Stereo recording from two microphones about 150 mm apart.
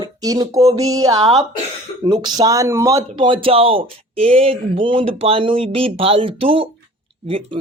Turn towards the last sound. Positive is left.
turn(degrees=-40)  # may be behind; listen again after turning